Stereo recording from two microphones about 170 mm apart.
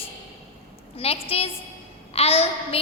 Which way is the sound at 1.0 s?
35° left (ahead or behind).